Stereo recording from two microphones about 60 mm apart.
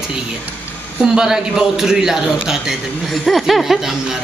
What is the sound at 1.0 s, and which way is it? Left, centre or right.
A man's voice, centre.